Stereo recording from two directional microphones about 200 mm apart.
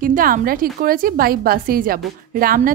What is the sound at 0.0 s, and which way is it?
A woman's voice, 45° right (ahead or behind).